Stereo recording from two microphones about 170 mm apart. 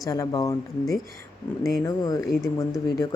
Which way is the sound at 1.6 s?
20° left (ahead or behind).